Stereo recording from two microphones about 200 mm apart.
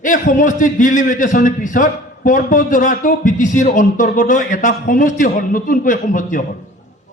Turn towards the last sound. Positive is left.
turn(degrees=40)  # may be behind; listen again after turning